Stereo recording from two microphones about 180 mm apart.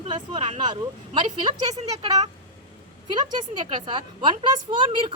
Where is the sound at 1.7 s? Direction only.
35° right (ahead or behind).